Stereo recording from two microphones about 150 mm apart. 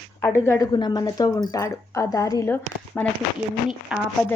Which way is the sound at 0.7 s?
30° left (ahead or behind).